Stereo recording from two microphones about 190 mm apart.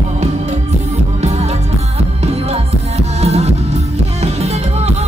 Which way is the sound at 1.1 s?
35° right (ahead or behind).